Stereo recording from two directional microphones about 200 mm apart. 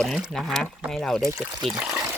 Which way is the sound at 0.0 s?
Centre (ahead or behind).